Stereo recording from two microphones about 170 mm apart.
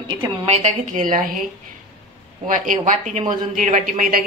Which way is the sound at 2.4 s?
50° right (ahead or behind).